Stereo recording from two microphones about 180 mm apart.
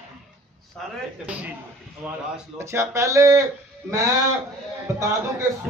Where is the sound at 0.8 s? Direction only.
5° left (ahead or behind).